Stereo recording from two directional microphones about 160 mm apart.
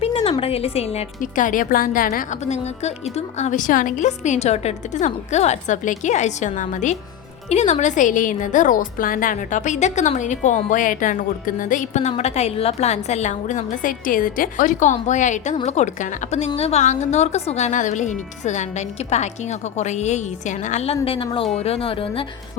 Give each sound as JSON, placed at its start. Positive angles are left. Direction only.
{"t": 0.0, "sound": "speech", "side_deg": 40}
{"t": 1.2, "sound": "a woman's voice", "side_deg": 55}